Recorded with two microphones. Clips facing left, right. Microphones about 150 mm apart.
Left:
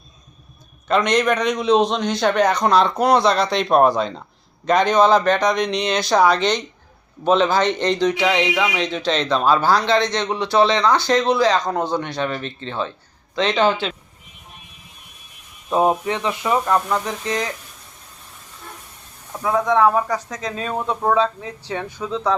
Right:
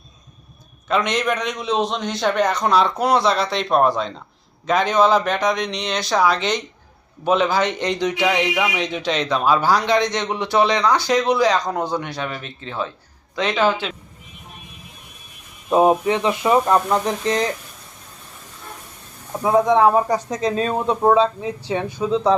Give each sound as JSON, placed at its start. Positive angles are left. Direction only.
{"t": 0.9, "sound": "a man's voice", "side_deg": 0}
{"t": 15.7, "sound": "speech", "side_deg": -15}
{"t": 19.4, "sound": "a man's voice", "side_deg": -20}